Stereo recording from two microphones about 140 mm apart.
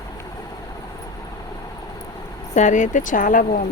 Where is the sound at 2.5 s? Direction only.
60° left (ahead or behind).